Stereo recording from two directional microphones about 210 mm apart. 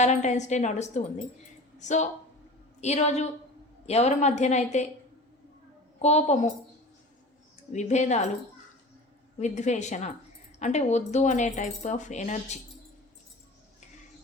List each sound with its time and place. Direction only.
0.0 s speech: 35° left (ahead or behind)
6.0 s speech: 30° left (ahead or behind)
7.7 s speech: 35° left (ahead or behind)
9.4 s speech: 35° left (ahead or behind)